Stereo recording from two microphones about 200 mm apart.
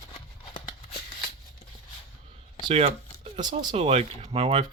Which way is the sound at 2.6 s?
30° right (ahead or behind).